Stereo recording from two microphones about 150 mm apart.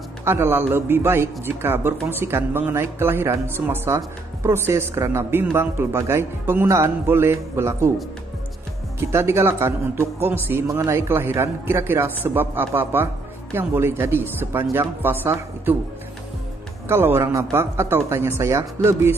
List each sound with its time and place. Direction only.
0.2 s speech: 15° right (ahead or behind)
9.0 s speech: 20° right (ahead or behind)
16.8 s speech: 15° right (ahead or behind)